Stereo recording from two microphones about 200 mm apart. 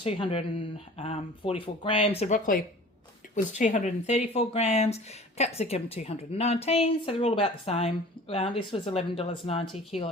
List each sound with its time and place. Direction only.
0.0 s speech: 30° left (ahead or behind)